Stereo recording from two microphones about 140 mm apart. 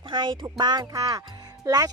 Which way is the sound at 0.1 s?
35° right (ahead or behind).